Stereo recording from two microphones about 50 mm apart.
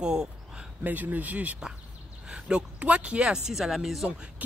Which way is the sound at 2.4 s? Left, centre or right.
Centre.